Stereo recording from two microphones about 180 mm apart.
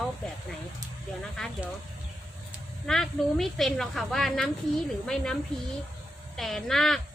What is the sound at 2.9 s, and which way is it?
Speech, centre (ahead or behind).